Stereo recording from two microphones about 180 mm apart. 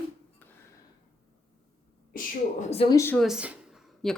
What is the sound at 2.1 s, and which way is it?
Speech, 40° left (ahead or behind).